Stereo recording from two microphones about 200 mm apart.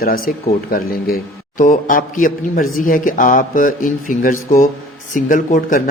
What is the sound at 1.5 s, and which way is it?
Speech, 40° left (ahead or behind).